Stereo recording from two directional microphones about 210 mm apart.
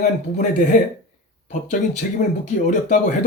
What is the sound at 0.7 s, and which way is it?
Speech, 35° left (ahead or behind).